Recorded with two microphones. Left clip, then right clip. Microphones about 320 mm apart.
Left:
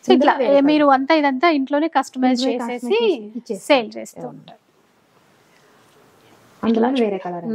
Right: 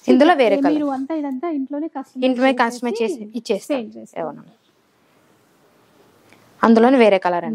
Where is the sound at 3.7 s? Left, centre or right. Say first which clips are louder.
Left 8 dB; left.